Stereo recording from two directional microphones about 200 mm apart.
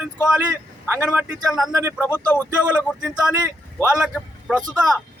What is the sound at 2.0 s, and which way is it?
Speech, 10° left (ahead or behind).